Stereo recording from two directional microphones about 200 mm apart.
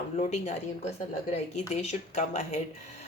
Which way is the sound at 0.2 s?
35° left (ahead or behind).